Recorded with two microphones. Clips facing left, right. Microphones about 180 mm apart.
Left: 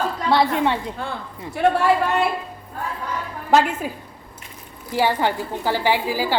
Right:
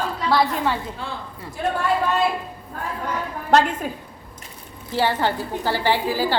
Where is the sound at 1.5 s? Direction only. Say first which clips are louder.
Left 6 dB; 75° left (ahead or behind).